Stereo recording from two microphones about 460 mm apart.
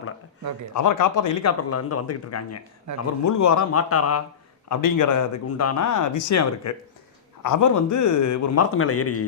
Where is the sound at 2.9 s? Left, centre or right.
Right.